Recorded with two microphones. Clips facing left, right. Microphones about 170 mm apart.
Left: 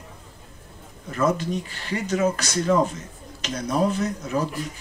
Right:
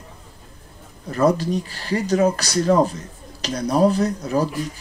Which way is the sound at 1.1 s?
35° right (ahead or behind).